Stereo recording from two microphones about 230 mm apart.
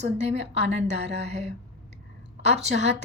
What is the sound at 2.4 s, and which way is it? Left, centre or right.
Speech, right.